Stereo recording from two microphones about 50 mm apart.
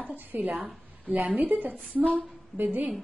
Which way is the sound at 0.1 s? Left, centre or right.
Right.